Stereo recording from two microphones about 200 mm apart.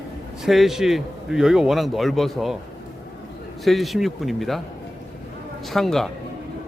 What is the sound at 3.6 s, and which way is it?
Speech, centre (ahead or behind).